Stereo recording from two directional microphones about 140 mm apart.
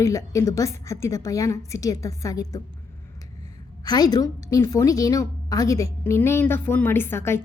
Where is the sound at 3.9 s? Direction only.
25° left (ahead or behind).